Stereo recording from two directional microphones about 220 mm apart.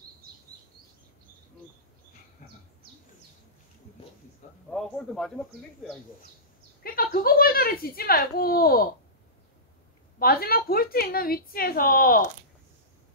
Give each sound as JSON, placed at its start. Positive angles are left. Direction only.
{"t": 4.6, "sound": "a sound", "side_deg": 0}
{"t": 6.8, "sound": "a woman's voice", "side_deg": 40}
{"t": 10.1, "sound": "a woman's voice", "side_deg": 45}